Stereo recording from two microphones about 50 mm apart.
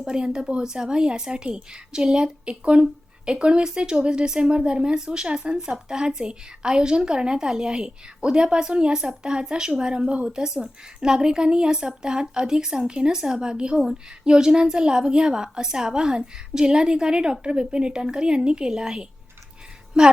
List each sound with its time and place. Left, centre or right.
0.0 s speech: centre